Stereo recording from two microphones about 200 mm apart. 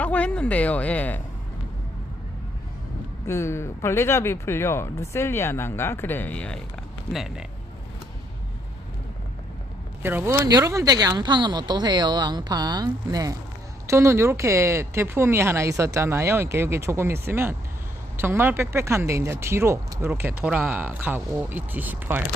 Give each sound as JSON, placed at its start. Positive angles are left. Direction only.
{"t": 0.0, "sound": "speech", "side_deg": 5}
{"t": 3.2, "sound": "speech", "side_deg": 15}
{"t": 10.0, "sound": "speech", "side_deg": -10}